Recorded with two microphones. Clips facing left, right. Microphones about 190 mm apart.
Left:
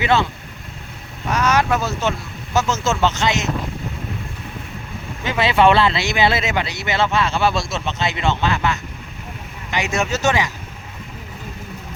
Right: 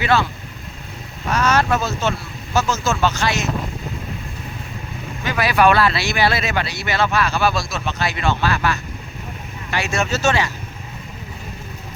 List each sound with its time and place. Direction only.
0.0 s speech: 20° left (ahead or behind)
1.3 s speech: 15° left (ahead or behind)
5.2 s speech: 25° left (ahead or behind)